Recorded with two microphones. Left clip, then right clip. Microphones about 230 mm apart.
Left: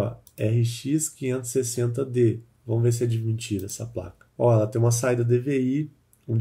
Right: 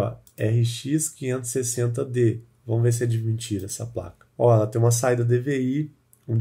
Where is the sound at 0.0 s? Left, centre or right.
Centre.